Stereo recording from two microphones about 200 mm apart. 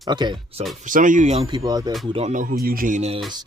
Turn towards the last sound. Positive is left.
turn(degrees=-35)  # may be behind; listen again after turning